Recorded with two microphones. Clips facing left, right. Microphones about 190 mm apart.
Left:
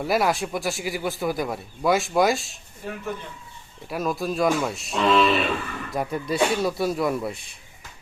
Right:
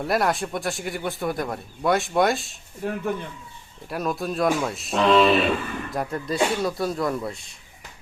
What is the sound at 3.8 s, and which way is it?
A man's voice, centre (ahead or behind).